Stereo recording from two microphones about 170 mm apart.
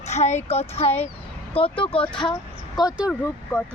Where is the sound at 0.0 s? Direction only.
40° left (ahead or behind).